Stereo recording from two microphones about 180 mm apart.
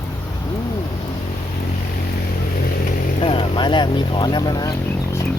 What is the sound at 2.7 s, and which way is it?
Vehicle, 50° left (ahead or behind).